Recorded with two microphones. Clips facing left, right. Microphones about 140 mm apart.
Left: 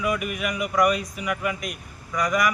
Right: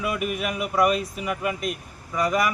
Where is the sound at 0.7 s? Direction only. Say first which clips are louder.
Right 1 dB; 30° right (ahead or behind).